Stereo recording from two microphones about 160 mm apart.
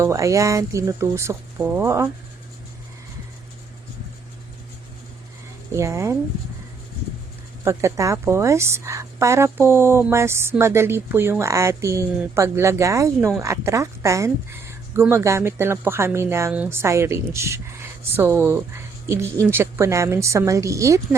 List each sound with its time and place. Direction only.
0.0 s speech: 20° right (ahead or behind)
5.7 s speech: 15° right (ahead or behind)
7.6 s speech: 15° right (ahead or behind)